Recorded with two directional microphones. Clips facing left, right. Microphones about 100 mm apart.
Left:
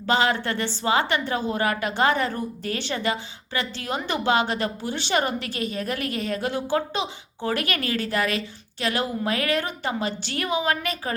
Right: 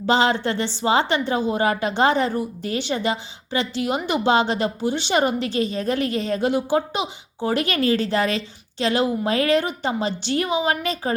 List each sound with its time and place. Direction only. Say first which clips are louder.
0.0 s a woman's voice: right 3 dB; 25° right (ahead or behind)
6.5 s a woman's voice: right 4 dB; 15° right (ahead or behind)